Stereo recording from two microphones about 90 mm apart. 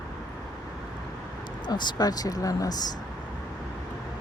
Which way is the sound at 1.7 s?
55° left (ahead or behind).